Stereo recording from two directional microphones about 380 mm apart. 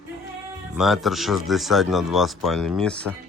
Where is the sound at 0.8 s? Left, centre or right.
Centre.